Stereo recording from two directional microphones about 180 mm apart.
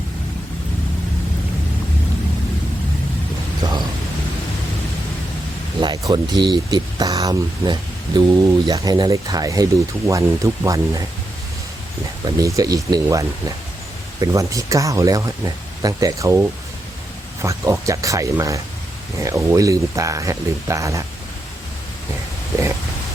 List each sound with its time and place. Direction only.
5.8 s a sound: 25° right (ahead or behind)
6.4 s speech: 25° right (ahead or behind)
12.2 s speech: 20° right (ahead or behind)